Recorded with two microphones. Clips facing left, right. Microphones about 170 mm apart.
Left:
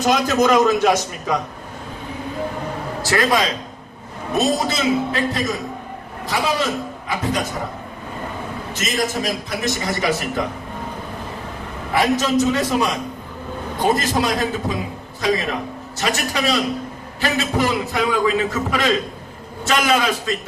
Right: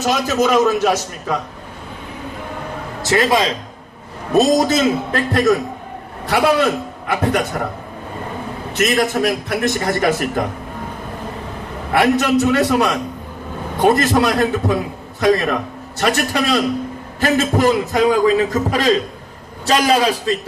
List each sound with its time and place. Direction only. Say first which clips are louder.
0.0 s a man's voice: even; 5° right (ahead or behind)
3.0 s a man's voice: right 3 dB; 20° right (ahead or behind)
4.4 s a man's voice: right 6 dB; 40° right (ahead or behind); by 7.4 s 60° right (ahead or behind)
8.7 s a man's voice: right 6 dB; 60° right (ahead or behind)
11.9 s a man's voice: right 3 dB; 60° right (ahead or behind)
16.0 s a man's voice: right 5 dB; 55° right (ahead or behind); by 20.3 s 35° right (ahead or behind)